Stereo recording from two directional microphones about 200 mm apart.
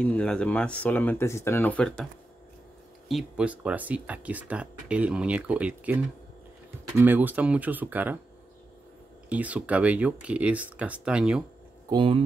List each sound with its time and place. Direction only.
0.0 s speech: 5° left (ahead or behind)
3.1 s speech: 5° right (ahead or behind)
7.0 s speech: 10° right (ahead or behind)
9.3 s speech: 5° right (ahead or behind)
11.9 s speech: 25° right (ahead or behind)